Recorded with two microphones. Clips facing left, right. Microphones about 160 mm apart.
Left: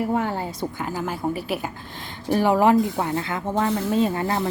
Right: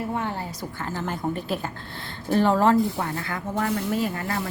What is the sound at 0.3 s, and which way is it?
A woman's voice, 15° left (ahead or behind).